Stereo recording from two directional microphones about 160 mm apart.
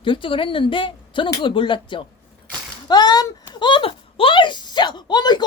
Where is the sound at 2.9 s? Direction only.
25° left (ahead or behind).